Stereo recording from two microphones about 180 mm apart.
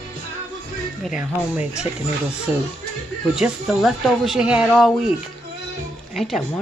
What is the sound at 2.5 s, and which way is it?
Speech, centre (ahead or behind).